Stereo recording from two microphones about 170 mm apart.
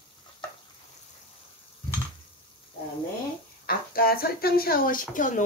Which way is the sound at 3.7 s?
60° left (ahead or behind).